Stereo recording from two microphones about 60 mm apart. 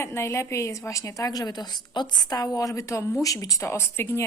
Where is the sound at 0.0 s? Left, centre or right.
Left.